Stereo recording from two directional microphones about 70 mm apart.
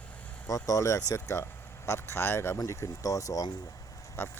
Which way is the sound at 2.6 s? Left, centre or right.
Left.